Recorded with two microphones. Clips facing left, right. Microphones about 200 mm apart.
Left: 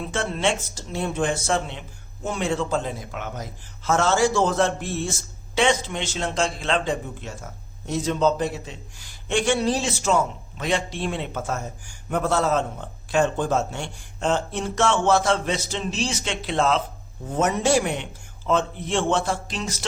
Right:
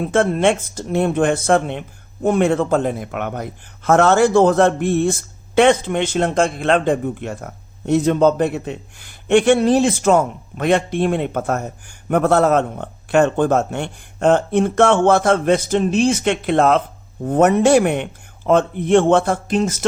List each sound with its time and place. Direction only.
0.0 s a man's voice: 55° right (ahead or behind)